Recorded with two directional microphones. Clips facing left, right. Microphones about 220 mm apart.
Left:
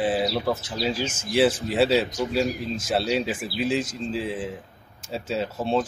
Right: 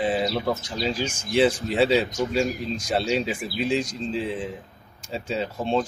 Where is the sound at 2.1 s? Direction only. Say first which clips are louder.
Even; 45° right (ahead or behind).